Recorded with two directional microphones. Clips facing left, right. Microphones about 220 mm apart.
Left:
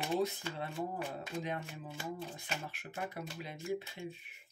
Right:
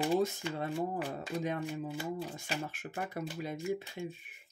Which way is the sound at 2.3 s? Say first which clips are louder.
Right 5 dB; 40° right (ahead or behind).